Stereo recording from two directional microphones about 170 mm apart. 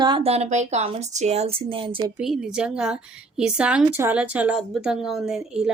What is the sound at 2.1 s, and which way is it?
A woman's voice, 5° right (ahead or behind).